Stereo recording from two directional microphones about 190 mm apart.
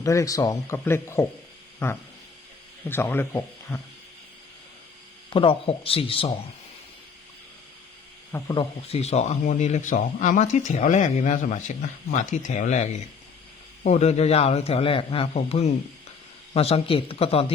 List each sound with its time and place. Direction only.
0.0 s speech: 15° left (ahead or behind)
5.3 s speech: 25° left (ahead or behind)
8.3 s speech: 20° left (ahead or behind)
8.9 s speech: 35° left (ahead or behind)